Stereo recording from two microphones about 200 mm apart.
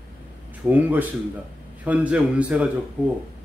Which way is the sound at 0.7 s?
10° right (ahead or behind).